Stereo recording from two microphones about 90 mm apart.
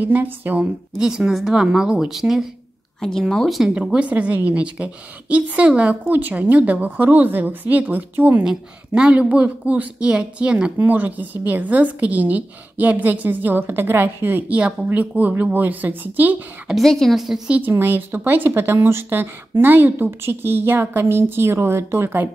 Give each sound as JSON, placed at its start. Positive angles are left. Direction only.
{"t": 0.0, "sound": "a woman's voice", "side_deg": -20}
{"t": 0.9, "sound": "a woman's voice", "side_deg": -5}
{"t": 3.7, "sound": "a woman's voice", "side_deg": -10}
{"t": 8.5, "sound": "a woman's voice", "side_deg": -10}
{"t": 16.6, "sound": "a woman's voice", "side_deg": 0}
{"t": 17.5, "sound": "a woman's voice", "side_deg": -20}